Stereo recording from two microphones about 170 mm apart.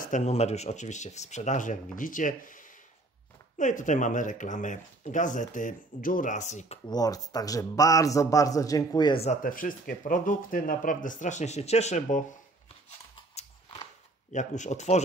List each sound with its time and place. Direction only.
0.0 s speech: 45° left (ahead or behind)
6.9 s a man's voice: 20° left (ahead or behind)
9.2 s speech: 50° left (ahead or behind)
13.1 s scissors: 40° left (ahead or behind)
14.3 s speech: 45° left (ahead or behind)